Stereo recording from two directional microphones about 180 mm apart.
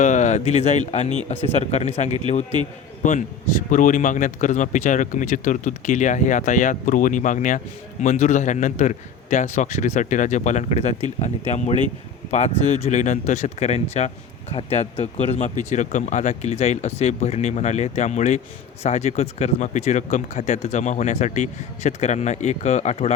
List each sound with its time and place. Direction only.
0.0 s speech: 45° left (ahead or behind)